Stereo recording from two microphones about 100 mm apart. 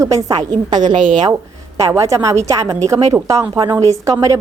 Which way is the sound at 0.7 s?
45° right (ahead or behind).